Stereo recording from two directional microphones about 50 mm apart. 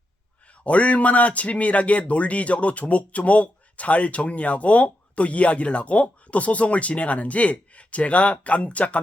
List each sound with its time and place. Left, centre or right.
0.6 s speech: left